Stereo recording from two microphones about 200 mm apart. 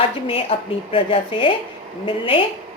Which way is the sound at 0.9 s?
25° left (ahead or behind).